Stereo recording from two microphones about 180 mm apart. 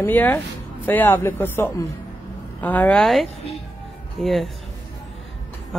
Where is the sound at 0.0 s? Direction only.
10° left (ahead or behind).